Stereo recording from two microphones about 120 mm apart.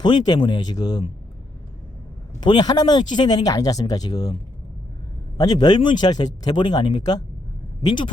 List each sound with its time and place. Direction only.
0.0 s speech: 40° left (ahead or behind)
2.4 s speech: 35° left (ahead or behind)
5.4 s speech: 35° left (ahead or behind)